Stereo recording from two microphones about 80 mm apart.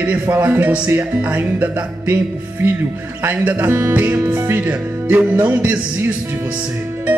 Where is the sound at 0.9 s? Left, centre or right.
Right.